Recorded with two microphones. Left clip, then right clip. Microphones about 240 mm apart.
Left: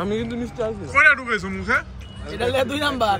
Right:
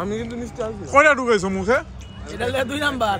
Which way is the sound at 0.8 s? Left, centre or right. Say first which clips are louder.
Right 1 dB; centre.